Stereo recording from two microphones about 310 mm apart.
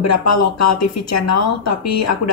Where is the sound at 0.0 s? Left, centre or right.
Left.